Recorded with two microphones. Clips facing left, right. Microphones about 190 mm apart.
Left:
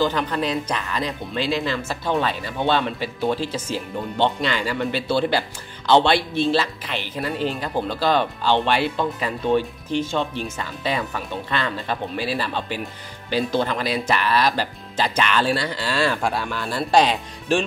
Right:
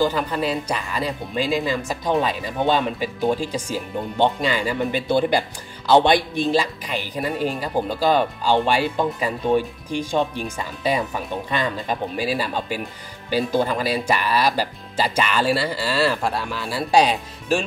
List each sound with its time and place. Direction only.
0.0 s speech: 5° right (ahead or behind)